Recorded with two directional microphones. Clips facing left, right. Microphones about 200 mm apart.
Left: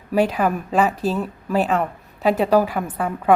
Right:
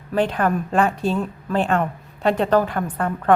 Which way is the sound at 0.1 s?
10° left (ahead or behind).